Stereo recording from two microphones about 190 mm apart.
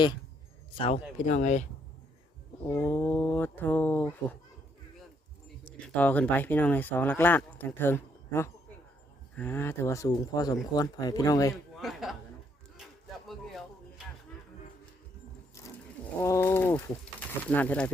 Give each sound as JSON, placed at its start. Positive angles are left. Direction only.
{"t": 0.8, "sound": "speech", "side_deg": 30}
{"t": 2.6, "sound": "speech", "side_deg": 15}
{"t": 5.9, "sound": "speech", "side_deg": 10}
{"t": 11.5, "sound": "a man's voice", "side_deg": 0}
{"t": 13.2, "sound": "a sound", "side_deg": 0}
{"t": 16.2, "sound": "speech", "side_deg": 15}